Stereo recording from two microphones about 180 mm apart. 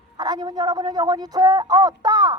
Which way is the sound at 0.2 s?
25° right (ahead or behind).